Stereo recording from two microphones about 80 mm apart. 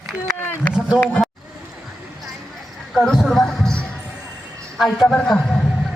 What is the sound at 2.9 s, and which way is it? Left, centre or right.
Music, centre.